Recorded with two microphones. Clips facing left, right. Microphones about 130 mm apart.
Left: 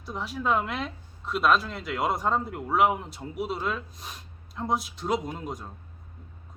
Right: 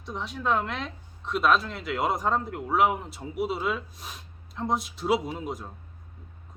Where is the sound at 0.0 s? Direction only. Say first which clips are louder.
Left 1 dB; 5° left (ahead or behind).